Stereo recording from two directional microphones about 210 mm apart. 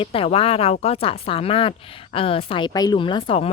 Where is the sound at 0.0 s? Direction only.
25° left (ahead or behind).